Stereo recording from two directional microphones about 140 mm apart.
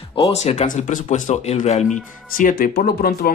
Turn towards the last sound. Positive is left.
turn(degrees=90)